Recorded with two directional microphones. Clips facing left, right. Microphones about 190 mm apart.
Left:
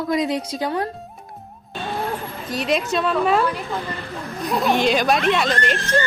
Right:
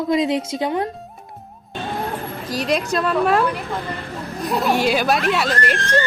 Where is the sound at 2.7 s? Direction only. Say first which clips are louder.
Even; centre (ahead or behind).